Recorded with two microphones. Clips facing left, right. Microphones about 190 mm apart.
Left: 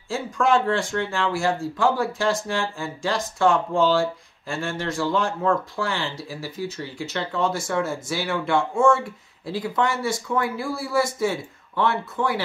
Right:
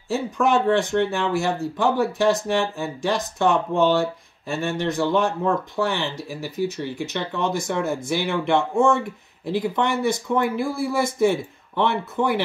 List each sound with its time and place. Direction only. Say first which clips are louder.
0.1 s speech: right 1 dB; 20° right (ahead or behind)